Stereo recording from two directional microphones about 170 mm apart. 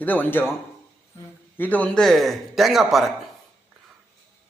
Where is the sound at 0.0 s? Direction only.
10° left (ahead or behind).